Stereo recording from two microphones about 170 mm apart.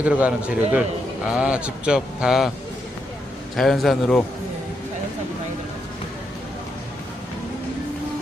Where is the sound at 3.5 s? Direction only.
Centre (ahead or behind).